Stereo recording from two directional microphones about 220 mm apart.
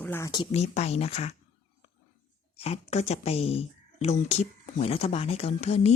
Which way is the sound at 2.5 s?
30° left (ahead or behind).